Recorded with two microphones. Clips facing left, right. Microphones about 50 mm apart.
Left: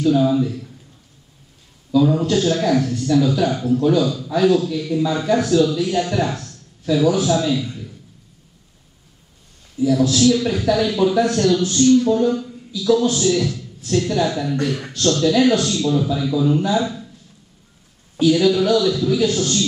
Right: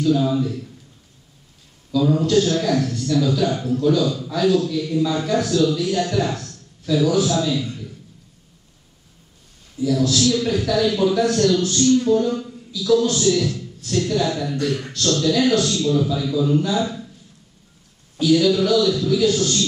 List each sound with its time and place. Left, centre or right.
0.0 s a man's voice: centre
1.9 s a man's voice: centre
3.8 s a man's voice: centre
9.8 s a man's voice: centre
12.1 s a sound: centre
12.8 s a man's voice: centre
18.1 s a man's voice: centre